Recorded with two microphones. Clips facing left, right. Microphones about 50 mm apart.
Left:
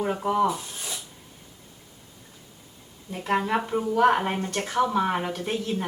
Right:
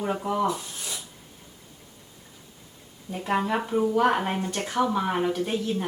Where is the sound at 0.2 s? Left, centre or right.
Centre.